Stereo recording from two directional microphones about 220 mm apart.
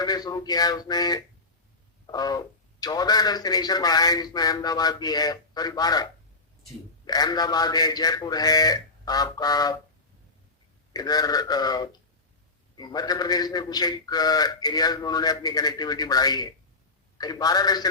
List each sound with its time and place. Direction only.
0.0 s a man's voice: 15° left (ahead or behind)
10.9 s a man's voice: 15° left (ahead or behind)